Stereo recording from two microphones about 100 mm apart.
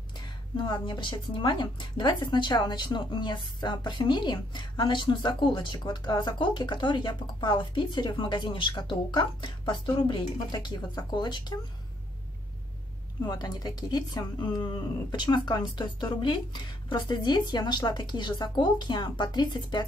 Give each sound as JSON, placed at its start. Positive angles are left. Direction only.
{"t": 0.6, "sound": "speech", "side_deg": 50}
{"t": 13.3, "sound": "speech", "side_deg": 40}